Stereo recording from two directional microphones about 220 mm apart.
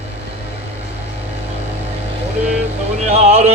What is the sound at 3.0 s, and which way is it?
Speech, 30° right (ahead or behind).